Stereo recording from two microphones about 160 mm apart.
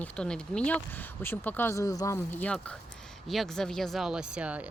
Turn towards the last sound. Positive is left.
turn(degrees=-5)  # may be behind; listen again after turning